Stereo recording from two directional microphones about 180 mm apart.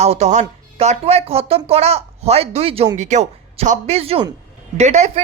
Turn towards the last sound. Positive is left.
turn(degrees=-35)  # may be behind; listen again after turning